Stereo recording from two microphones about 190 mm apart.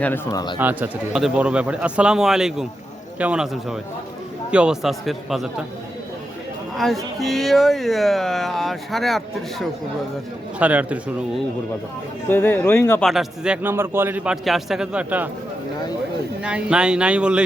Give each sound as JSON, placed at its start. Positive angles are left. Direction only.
{"t": 0.0, "sound": "speech", "side_deg": 15}
{"t": 0.6, "sound": "speech", "side_deg": -10}
{"t": 6.7, "sound": "a man's voice", "side_deg": 0}
{"t": 12.3, "sound": "speech", "side_deg": 10}
{"t": 13.1, "sound": "a man's voice", "side_deg": -5}
{"t": 16.4, "sound": "speech", "side_deg": -5}